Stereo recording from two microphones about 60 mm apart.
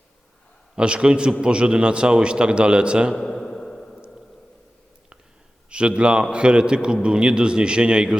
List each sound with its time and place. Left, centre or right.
0.8 s a man's voice: centre
3.2 s a sound: centre
5.7 s a man's voice: centre